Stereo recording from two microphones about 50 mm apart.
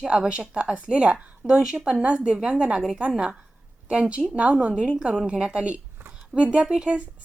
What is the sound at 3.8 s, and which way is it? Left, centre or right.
A woman's voice, right.